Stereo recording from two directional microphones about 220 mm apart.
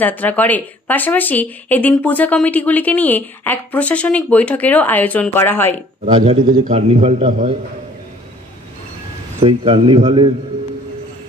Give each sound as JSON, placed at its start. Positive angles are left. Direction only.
{"t": 0.0, "sound": "speech", "side_deg": 10}
{"t": 6.1, "sound": "a man's voice", "side_deg": -25}
{"t": 6.4, "sound": "a man's voice", "side_deg": -35}
{"t": 9.4, "sound": "a man's voice", "side_deg": -25}